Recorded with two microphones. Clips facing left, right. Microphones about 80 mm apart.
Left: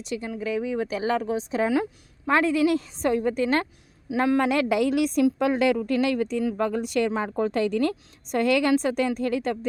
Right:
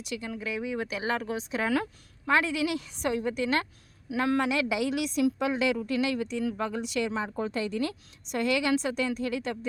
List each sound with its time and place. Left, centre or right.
0.0 s a woman's voice: left
1.6 s speech: centre
2.2 s a woman's voice: left
4.1 s speech: left
4.4 s a woman's voice: left